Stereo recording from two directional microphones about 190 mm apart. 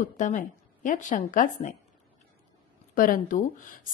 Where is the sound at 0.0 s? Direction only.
40° left (ahead or behind).